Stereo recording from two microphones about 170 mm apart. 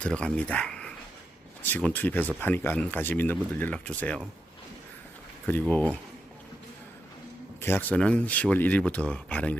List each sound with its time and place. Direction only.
0.0 s speech: 5° left (ahead or behind)
5.5 s speech: 10° left (ahead or behind)
7.6 s speech: 10° left (ahead or behind)